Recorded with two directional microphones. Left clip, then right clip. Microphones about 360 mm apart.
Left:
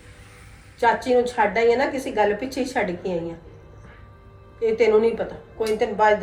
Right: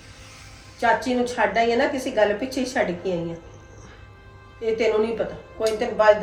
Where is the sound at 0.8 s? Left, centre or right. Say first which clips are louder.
Left 2 dB; centre.